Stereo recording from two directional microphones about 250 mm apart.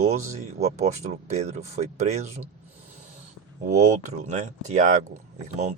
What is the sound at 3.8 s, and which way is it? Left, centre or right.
Speech, right.